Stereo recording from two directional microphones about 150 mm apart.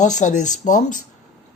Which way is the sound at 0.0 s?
55° left (ahead or behind).